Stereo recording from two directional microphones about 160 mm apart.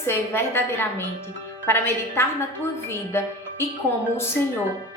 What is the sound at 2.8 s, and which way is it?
Music, 15° left (ahead or behind).